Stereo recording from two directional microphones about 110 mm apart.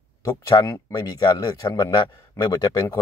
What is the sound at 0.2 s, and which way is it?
Speech, 30° left (ahead or behind).